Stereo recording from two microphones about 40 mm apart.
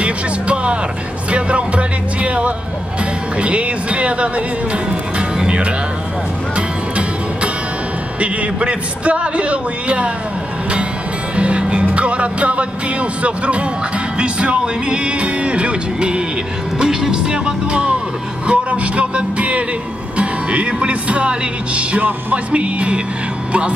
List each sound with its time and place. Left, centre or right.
0.0 s speech: right
1.3 s music: right
3.3 s a man's voice: right
6.5 s music: right
8.2 s a man's voice: right
11.3 s music: right
16.7 s speech: centre
18.5 s music: right
20.2 s a man's voice: right